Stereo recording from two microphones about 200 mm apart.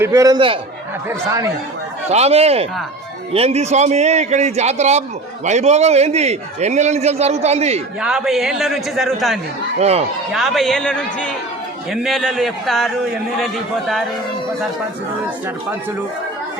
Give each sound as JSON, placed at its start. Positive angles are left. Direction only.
{"t": 0.0, "sound": "a man's voice", "side_deg": -15}
{"t": 2.0, "sound": "a man's voice", "side_deg": -30}
{"t": 8.0, "sound": "a man's voice", "side_deg": -5}
{"t": 9.7, "sound": "a man's voice", "side_deg": -35}
{"t": 10.3, "sound": "a man's voice", "side_deg": 0}